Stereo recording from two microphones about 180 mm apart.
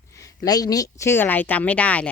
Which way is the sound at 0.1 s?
20° left (ahead or behind).